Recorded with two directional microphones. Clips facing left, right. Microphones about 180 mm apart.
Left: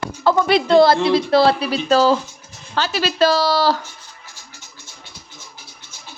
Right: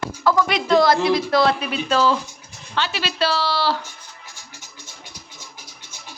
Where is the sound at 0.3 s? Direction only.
30° left (ahead or behind).